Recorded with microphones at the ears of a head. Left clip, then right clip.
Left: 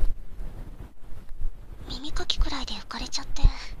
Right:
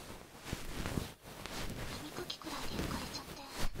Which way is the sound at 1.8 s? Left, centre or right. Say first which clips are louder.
Left 12 dB; left.